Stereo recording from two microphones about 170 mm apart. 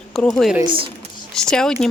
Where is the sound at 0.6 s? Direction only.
30° right (ahead or behind).